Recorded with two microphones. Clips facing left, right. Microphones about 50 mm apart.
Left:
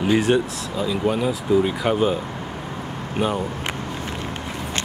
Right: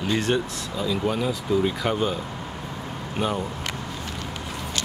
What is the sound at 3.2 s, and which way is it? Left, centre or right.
Speech, left.